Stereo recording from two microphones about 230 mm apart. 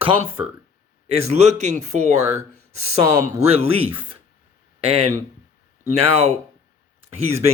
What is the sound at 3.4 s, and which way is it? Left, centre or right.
Speech, right.